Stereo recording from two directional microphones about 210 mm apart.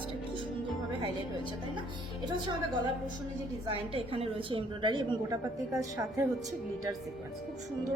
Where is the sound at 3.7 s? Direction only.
25° right (ahead or behind).